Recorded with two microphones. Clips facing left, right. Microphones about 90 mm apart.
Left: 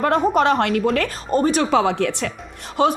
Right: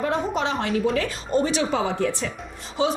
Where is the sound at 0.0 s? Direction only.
55° left (ahead or behind).